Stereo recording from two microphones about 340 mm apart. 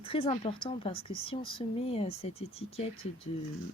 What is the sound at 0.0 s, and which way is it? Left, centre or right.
Speech, centre.